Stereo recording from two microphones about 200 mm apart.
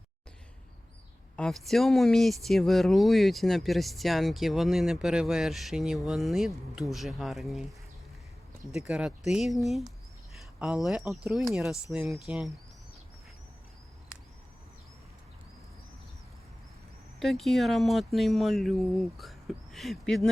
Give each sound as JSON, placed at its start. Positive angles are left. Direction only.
{"t": 1.4, "sound": "speech", "side_deg": 0}
{"t": 8.7, "sound": "speech", "side_deg": -5}
{"t": 17.2, "sound": "speech", "side_deg": 0}